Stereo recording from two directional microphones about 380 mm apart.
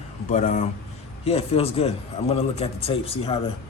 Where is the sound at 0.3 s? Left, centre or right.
Centre.